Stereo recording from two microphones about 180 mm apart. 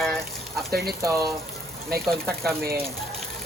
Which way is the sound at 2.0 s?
Centre (ahead or behind).